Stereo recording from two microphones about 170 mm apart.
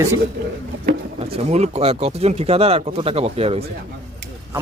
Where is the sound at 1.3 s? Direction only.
40° right (ahead or behind).